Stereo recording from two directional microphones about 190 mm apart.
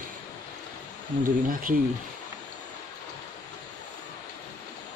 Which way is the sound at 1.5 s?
45° right (ahead or behind).